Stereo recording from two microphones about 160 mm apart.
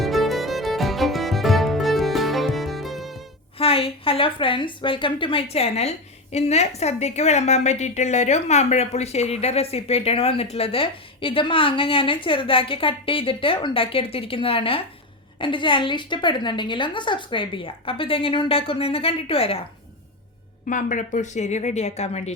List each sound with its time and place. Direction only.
0.0 s music: centre (ahead or behind)
3.6 s a woman's voice: 35° left (ahead or behind)
20.7 s a woman's voice: 55° left (ahead or behind)